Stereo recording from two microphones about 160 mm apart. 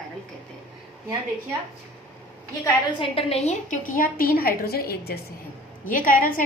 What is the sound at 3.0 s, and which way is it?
A woman's voice, 35° left (ahead or behind).